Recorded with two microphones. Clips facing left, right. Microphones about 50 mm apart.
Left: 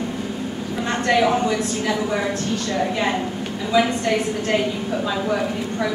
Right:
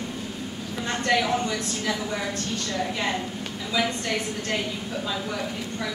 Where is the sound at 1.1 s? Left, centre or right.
Left.